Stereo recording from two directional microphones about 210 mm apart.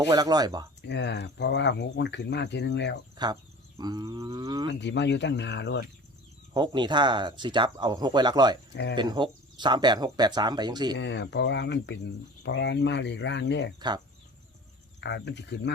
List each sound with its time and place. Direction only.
0.1 s speech: 20° right (ahead or behind)
0.8 s speech: 55° left (ahead or behind)
3.2 s speech: 20° right (ahead or behind)
4.7 s speech: 55° left (ahead or behind)
6.5 s speech: 20° right (ahead or behind)
8.7 s speech: 55° left (ahead or behind)
9.0 s speech: 20° right (ahead or behind)
10.9 s speech: 55° left (ahead or behind)
13.7 s speech: 20° right (ahead or behind)
15.0 s speech: 55° left (ahead or behind)